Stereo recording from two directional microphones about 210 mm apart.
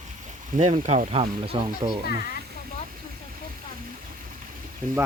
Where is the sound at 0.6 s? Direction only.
35° right (ahead or behind).